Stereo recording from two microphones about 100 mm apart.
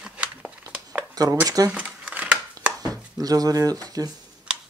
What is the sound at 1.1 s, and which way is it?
Speech, 35° right (ahead or behind).